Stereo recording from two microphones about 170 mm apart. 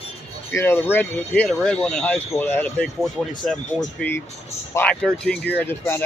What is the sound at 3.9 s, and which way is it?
Speech, 10° left (ahead or behind).